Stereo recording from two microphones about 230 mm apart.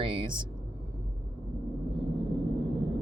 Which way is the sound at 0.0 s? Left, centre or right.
Right.